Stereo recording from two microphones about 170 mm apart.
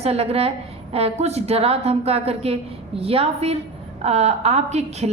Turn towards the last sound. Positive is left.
turn(degrees=-40)  # may be behind; listen again after turning